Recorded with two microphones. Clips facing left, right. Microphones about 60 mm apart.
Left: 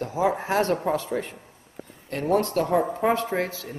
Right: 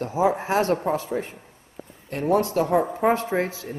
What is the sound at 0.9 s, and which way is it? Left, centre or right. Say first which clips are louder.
Speech: right 1 dB; left.